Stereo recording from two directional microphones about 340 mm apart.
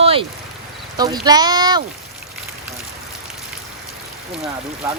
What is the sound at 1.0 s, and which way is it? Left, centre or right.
Speech, centre.